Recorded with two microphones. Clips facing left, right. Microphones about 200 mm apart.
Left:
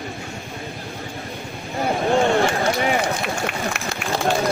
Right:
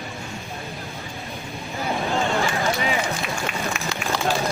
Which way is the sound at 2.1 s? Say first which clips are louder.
Left 6 dB; 70° left (ahead or behind).